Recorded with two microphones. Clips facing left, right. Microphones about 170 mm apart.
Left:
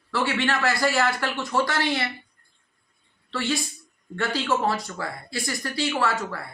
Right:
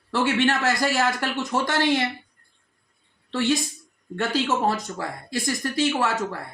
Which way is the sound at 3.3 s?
20° right (ahead or behind).